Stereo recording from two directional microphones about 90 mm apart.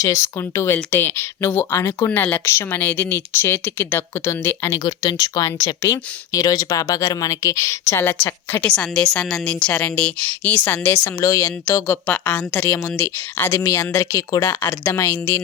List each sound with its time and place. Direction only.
0.0 s speech: 30° left (ahead or behind)
4.7 s speech: 45° left (ahead or behind); by 8.6 s 25° left (ahead or behind)
8.6 s a woman's voice: 10° left (ahead or behind)
11.2 s speech: 40° left (ahead or behind)
11.9 s a woman's voice: 15° left (ahead or behind); by 14.4 s 40° left (ahead or behind)
14.4 s speech: 25° left (ahead or behind)